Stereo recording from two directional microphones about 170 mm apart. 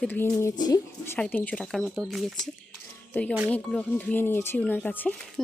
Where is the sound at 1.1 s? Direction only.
10° left (ahead or behind).